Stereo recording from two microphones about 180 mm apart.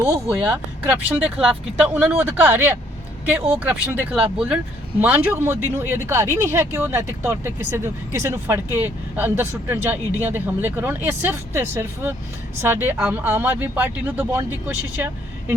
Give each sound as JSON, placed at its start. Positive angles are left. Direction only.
{"t": 0.1, "sound": "speech", "side_deg": -10}
{"t": 14.9, "sound": "vehicle", "side_deg": -10}